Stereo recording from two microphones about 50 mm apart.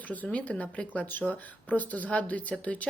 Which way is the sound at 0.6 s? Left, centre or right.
Left.